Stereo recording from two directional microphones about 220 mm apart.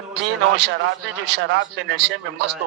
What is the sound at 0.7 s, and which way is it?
A man's voice, 50° right (ahead or behind).